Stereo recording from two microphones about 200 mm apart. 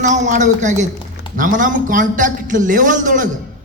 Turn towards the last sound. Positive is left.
turn(degrees=-40)  # may be behind; listen again after turning